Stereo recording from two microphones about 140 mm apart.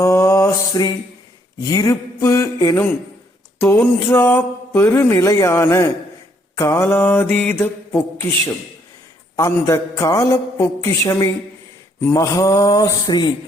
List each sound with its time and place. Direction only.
0.0 s mantra: 20° left (ahead or behind)
1.6 s speech: 25° left (ahead or behind)
3.8 s speech: 15° left (ahead or behind)
6.6 s mantra: 20° left (ahead or behind)
9.3 s speech: 25° left (ahead or behind)